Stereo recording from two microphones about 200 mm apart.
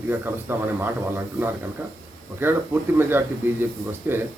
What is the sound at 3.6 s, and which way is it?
Speech, 10° right (ahead or behind).